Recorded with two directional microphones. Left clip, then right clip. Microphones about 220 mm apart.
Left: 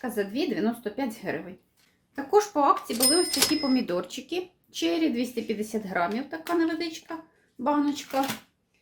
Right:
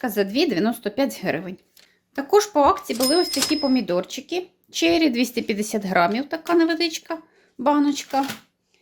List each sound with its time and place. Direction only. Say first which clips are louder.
0.0 s speech: right 7 dB; 45° right (ahead or behind)